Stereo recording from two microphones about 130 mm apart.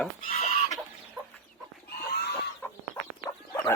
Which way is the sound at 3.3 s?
25° left (ahead or behind).